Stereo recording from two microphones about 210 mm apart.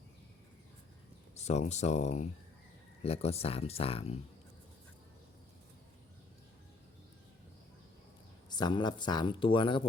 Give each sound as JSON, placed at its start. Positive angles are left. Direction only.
{"t": 1.4, "sound": "speech", "side_deg": 30}
{"t": 8.4, "sound": "speech", "side_deg": 20}